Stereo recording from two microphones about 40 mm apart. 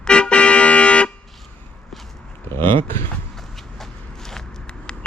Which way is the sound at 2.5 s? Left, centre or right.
Left.